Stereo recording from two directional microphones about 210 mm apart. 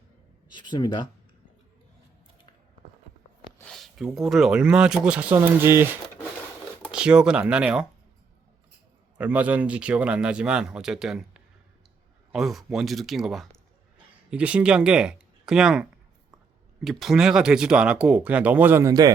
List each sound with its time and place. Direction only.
0.5 s speech: 20° left (ahead or behind)
3.6 s speech: centre (ahead or behind)
9.1 s speech: 5° right (ahead or behind)